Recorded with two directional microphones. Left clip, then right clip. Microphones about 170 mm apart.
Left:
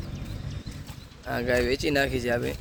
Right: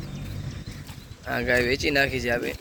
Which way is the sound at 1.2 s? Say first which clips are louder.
Right 2 dB; 25° left (ahead or behind).